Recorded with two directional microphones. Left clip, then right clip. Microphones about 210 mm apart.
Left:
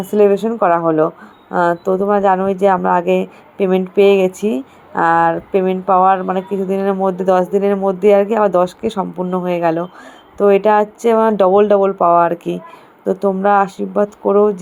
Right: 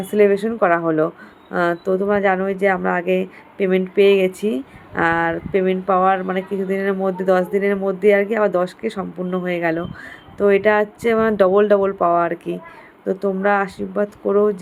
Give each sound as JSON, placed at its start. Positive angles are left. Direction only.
{"t": 0.0, "sound": "speech", "side_deg": 10}